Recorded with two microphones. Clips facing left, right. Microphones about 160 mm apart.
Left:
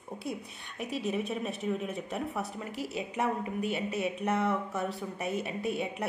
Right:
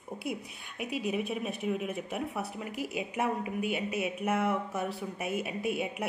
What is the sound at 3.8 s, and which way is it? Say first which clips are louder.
Speech: even; 30° left (ahead or behind).